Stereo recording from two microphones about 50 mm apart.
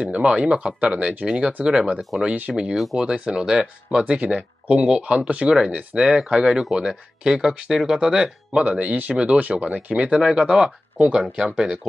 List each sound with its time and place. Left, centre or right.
0.0 s speech: centre
2.0 s speech: centre
2.3 s speech: right
2.7 s speech: centre; by 10.1 s right
10.1 s speech: centre